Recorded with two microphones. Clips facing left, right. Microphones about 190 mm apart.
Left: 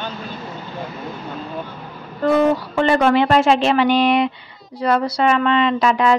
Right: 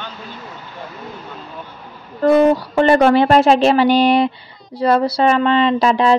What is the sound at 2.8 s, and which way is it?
A woman's voice, 40° right (ahead or behind).